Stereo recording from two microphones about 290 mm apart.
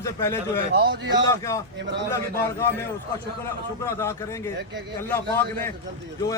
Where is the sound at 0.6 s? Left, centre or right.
Right.